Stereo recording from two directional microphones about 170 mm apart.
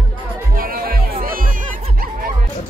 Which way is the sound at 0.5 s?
55° right (ahead or behind).